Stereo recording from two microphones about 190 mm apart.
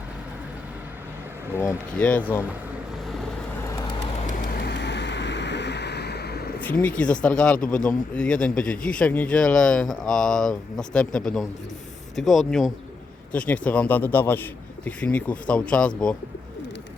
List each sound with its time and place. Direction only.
1.5 s a man's voice: 10° left (ahead or behind)
4.5 s vehicle: 60° left (ahead or behind)
6.6 s a man's voice: 10° left (ahead or behind)